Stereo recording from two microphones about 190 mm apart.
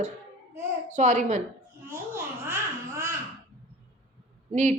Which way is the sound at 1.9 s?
15° right (ahead or behind).